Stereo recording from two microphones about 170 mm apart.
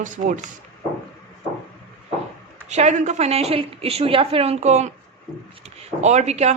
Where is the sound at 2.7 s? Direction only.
45° right (ahead or behind).